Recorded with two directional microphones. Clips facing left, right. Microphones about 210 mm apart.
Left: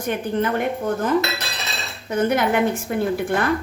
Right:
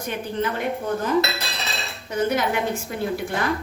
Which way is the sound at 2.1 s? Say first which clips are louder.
Left 3 dB; 55° left (ahead or behind).